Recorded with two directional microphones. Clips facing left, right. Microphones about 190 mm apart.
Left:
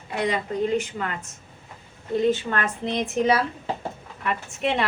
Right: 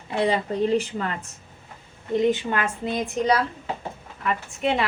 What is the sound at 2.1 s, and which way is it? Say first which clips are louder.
A woman's voice: right 1 dB; 15° right (ahead or behind).